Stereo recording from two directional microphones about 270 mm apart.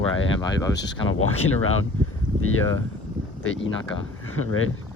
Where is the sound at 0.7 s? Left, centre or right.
Left.